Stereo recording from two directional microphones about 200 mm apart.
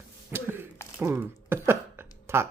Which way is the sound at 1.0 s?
10° right (ahead or behind).